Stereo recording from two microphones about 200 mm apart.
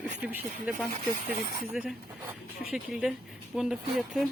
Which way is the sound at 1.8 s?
5° right (ahead or behind).